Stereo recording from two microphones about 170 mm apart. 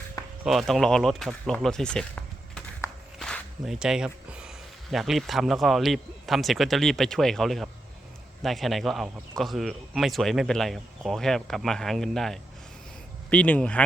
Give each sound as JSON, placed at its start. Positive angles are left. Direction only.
{"t": 0.4, "sound": "speech", "side_deg": 0}
{"t": 1.6, "sound": "a sound", "side_deg": 5}
{"t": 3.2, "sound": "walk", "side_deg": 5}
{"t": 3.8, "sound": "speech", "side_deg": -5}